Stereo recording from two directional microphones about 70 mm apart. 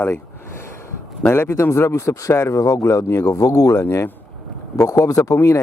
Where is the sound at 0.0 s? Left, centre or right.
Left.